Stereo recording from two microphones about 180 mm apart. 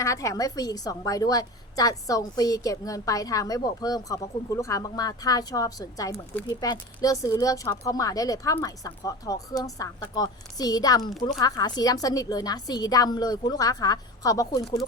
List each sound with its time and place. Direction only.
0.0 s a woman's voice: 15° left (ahead or behind)